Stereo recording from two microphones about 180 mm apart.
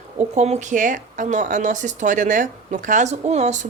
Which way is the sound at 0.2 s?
40° right (ahead or behind).